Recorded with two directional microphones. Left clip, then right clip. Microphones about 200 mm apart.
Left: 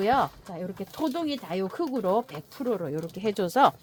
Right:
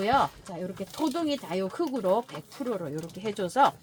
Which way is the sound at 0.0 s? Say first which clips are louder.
Left 1 dB; 40° left (ahead or behind).